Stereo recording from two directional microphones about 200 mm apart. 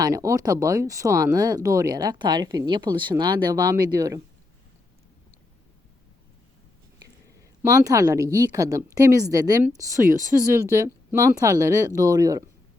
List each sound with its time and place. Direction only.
0.0 s speech: 15° right (ahead or behind)
7.6 s speech: 15° right (ahead or behind)